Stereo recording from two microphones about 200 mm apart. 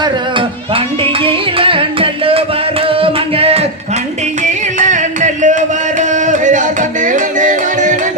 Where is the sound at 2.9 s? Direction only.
25° right (ahead or behind).